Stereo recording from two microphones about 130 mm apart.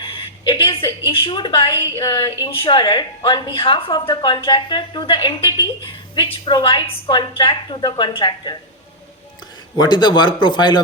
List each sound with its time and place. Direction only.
0.0 s a sound: 40° left (ahead or behind)
1.1 s a woman's voice: 40° left (ahead or behind)
9.7 s a woman's voice: 35° left (ahead or behind)